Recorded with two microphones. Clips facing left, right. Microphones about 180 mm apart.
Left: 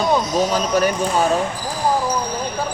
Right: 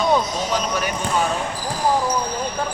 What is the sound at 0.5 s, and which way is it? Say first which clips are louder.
Speech: left 5 dB; 40° left (ahead or behind).